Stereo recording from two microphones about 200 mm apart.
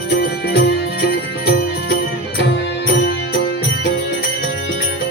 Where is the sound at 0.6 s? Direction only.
55° left (ahead or behind).